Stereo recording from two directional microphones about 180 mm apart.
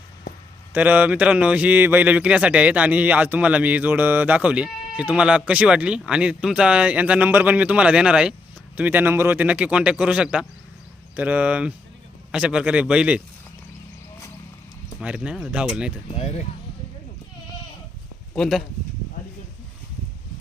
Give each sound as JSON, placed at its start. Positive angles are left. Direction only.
{"t": 0.7, "sound": "a man's voice", "side_deg": -10}
{"t": 15.0, "sound": "a man's voice", "side_deg": -5}
{"t": 16.1, "sound": "speech", "side_deg": 35}
{"t": 18.3, "sound": "a man's voice", "side_deg": 0}